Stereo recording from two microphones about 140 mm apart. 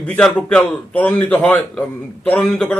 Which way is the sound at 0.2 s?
5° left (ahead or behind).